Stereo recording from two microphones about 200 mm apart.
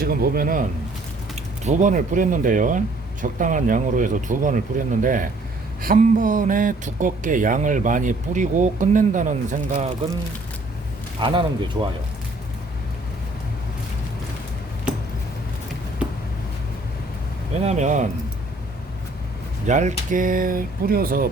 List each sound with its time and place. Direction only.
0.0 s speech: 50° right (ahead or behind)
1.6 s speech: 40° right (ahead or behind)
11.2 s speech: 25° right (ahead or behind)
17.7 s speech: 35° right (ahead or behind)
19.6 s speech: 35° right (ahead or behind)